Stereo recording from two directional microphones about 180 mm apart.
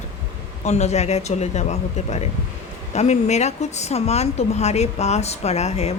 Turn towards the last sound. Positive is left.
turn(degrees=35)  # may be behind; listen again after turning